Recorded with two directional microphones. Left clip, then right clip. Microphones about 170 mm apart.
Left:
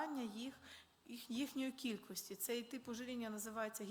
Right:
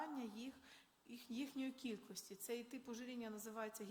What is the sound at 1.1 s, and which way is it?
A woman's voice, 35° left (ahead or behind).